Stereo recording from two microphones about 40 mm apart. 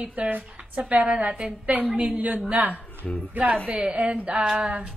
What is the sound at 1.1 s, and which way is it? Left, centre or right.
Speech, right.